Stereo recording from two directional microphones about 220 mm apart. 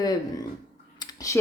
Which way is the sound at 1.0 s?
15° left (ahead or behind).